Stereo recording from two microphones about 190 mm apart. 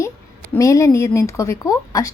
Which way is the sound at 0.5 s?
15° left (ahead or behind).